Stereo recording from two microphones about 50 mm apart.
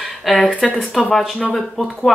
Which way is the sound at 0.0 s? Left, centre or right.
Centre.